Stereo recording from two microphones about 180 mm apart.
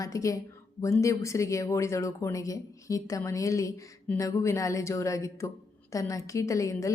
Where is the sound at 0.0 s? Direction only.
20° left (ahead or behind).